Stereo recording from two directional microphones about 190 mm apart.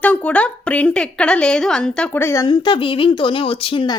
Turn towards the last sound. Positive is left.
turn(degrees=25)  # may be behind; listen again after turning